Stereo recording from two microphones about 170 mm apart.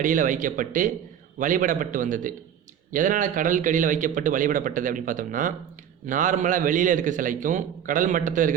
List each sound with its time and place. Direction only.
0.0 s speech: 50° right (ahead or behind)